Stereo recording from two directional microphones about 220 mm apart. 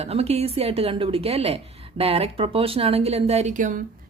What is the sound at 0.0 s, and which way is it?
Speech, 30° right (ahead or behind).